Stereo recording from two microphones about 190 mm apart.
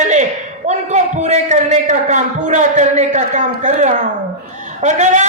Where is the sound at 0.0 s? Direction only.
40° right (ahead or behind).